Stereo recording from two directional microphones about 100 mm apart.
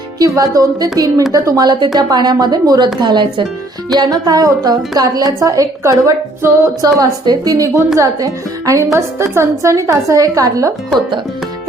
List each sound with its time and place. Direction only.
0.2 s a woman's voice: 40° right (ahead or behind)